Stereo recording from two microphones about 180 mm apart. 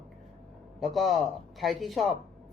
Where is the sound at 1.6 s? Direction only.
Centre (ahead or behind).